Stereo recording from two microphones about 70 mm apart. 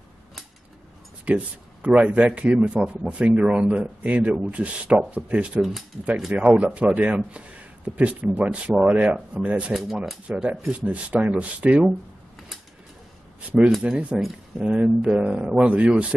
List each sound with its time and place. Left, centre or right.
1.2 s a sound: centre
1.9 s a man's voice: centre
5.6 s speech: centre
6.3 s a man's voice: right
9.7 s speech: centre
10.2 s speech: centre
13.8 s a man's voice: centre